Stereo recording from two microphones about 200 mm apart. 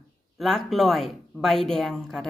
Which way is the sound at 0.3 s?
Centre (ahead or behind).